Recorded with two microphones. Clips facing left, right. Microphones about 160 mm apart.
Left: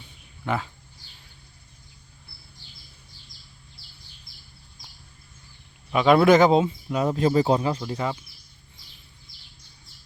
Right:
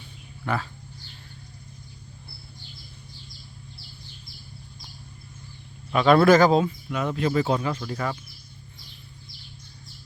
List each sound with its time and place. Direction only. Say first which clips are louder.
0.4 s speech: left 1 dB; 20° left (ahead or behind)
5.9 s speech: even; 15° left (ahead or behind)